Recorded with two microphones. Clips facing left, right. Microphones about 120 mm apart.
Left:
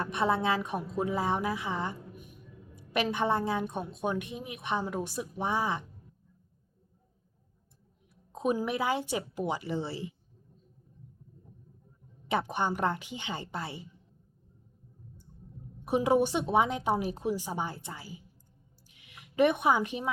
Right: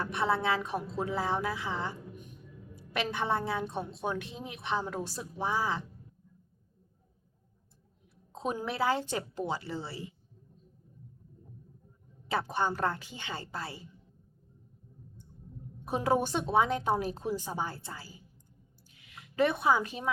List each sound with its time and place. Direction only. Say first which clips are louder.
0.0 s a woman's voice: left 1 dB; 20° left (ahead or behind)
2.1 s a sound: right 1 dB; 10° left (ahead or behind)
2.7 s a woman's voice: left 3 dB; 20° left (ahead or behind)
8.1 s a woman's voice: left 5 dB; 15° left (ahead or behind)
12.3 s a woman's voice: left 1 dB; 20° left (ahead or behind)
15.9 s a woman's voice: left 3 dB; 15° left (ahead or behind)
18.9 s a sound: even; 20° left (ahead or behind)
19.2 s a woman's voice: left 3 dB; 15° left (ahead or behind)